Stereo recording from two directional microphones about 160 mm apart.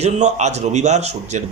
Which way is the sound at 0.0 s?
45° right (ahead or behind).